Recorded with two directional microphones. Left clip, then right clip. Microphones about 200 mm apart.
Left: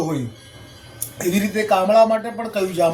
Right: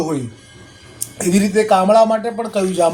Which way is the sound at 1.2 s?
15° right (ahead or behind).